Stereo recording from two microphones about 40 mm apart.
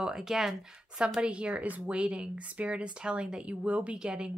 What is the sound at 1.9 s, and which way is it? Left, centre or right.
Speech, right.